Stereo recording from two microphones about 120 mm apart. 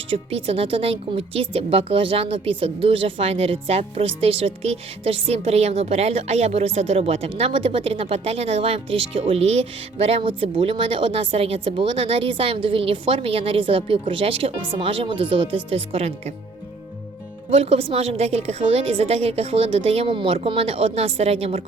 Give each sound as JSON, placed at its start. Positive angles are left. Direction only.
{"t": 0.1, "sound": "a woman's voice", "side_deg": -55}
{"t": 17.5, "sound": "a woman's voice", "side_deg": -55}